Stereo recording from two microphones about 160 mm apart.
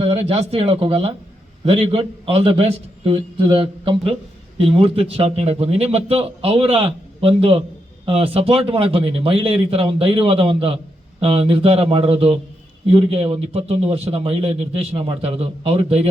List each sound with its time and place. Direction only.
0.0 s a man's voice: 40° right (ahead or behind)